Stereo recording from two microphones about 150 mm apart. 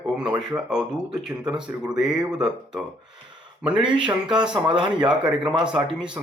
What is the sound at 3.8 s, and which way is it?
Speech, 30° right (ahead or behind).